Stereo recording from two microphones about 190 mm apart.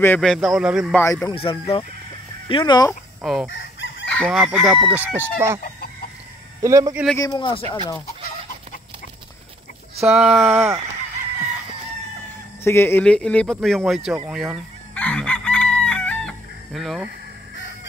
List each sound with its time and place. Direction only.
0.0 s speech: 5° left (ahead or behind)
0.9 s speech: 15° left (ahead or behind)
1.3 s speech: 30° left (ahead or behind)
2.9 s speech: 5° right (ahead or behind)
6.6 s speech: 15° right (ahead or behind)
7.2 s speech: 20° left (ahead or behind)
10.1 s speech: 5° right (ahead or behind)
12.6 s speech: 10° left (ahead or behind)
14.2 s chicken: 5° right (ahead or behind)